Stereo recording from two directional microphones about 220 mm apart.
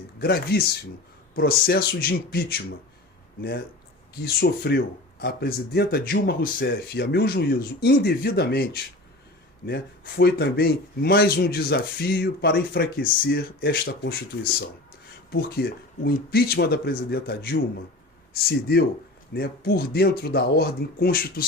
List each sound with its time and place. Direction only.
0.2 s speech: 45° left (ahead or behind)
4.1 s speech: 45° left (ahead or behind)